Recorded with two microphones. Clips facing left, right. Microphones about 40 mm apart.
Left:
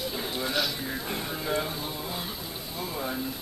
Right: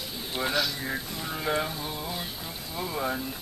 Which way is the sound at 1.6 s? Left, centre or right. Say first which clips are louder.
Even; centre.